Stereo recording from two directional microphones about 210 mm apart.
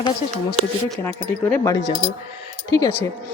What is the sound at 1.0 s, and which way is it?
Speech, 10° left (ahead or behind).